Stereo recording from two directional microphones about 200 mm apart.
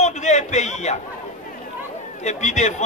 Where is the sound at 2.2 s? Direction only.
35° left (ahead or behind).